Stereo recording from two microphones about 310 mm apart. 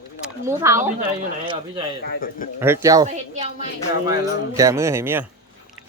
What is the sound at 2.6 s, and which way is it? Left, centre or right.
Speech, centre.